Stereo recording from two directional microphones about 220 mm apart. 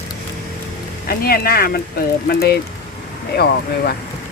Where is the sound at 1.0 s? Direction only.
45° left (ahead or behind).